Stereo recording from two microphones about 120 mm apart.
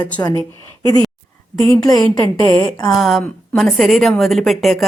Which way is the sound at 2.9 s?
Centre (ahead or behind).